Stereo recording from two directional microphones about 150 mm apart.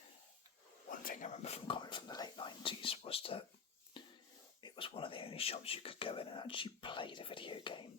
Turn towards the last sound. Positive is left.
turn(degrees=35)  # may be behind; listen again after turning